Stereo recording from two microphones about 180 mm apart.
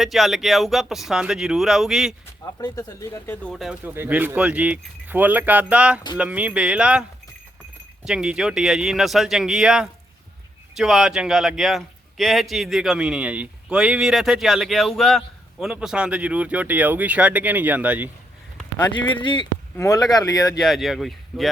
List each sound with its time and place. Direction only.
0.0 s a man's voice: centre (ahead or behind)
2.2 s speech: 20° left (ahead or behind)
3.5 s speech: 5° right (ahead or behind)
8.0 s a man's voice: 5° right (ahead or behind)
18.5 s a sound: 10° left (ahead or behind)
19.1 s speech: 25° left (ahead or behind)
20.6 s a man's voice: centre (ahead or behind)